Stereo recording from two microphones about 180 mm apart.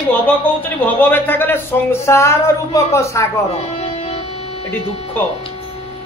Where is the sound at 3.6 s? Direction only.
35° left (ahead or behind).